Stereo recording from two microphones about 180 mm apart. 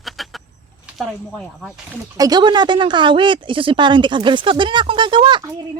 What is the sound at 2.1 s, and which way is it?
A woman's voice, 20° right (ahead or behind).